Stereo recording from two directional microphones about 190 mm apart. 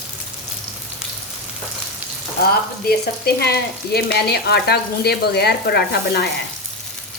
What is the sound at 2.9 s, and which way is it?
Speech, 55° left (ahead or behind).